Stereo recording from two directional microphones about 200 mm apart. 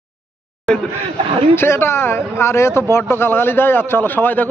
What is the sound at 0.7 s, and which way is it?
Speech, centre (ahead or behind).